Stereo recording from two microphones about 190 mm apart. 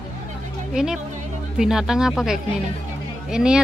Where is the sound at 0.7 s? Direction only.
5° right (ahead or behind).